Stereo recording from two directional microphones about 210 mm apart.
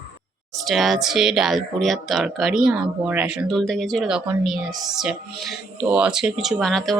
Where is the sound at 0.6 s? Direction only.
Centre (ahead or behind).